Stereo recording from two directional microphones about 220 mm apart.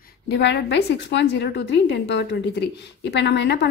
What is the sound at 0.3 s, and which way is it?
A woman's voice, 50° left (ahead or behind).